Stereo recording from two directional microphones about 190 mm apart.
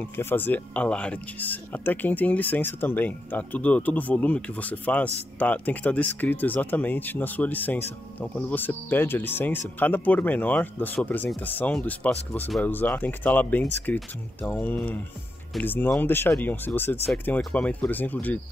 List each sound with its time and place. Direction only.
0.0 s speech: 10° left (ahead or behind)